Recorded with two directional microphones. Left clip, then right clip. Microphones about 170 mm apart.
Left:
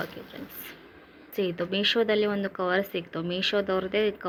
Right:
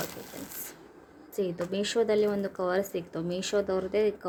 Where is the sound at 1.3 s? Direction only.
Centre (ahead or behind).